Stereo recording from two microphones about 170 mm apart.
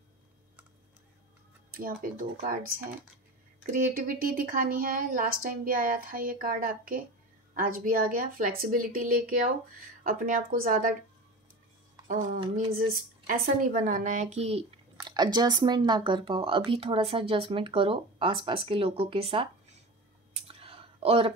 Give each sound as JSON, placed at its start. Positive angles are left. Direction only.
{"t": 2.1, "sound": "a woman's voice", "side_deg": -55}
{"t": 12.1, "sound": "a woman's voice", "side_deg": -55}
{"t": 20.3, "sound": "clicking", "side_deg": -35}